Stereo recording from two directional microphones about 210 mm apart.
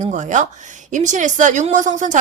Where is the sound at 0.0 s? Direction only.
35° right (ahead or behind).